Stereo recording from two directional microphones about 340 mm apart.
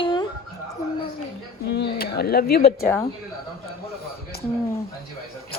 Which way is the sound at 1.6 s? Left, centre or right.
Left.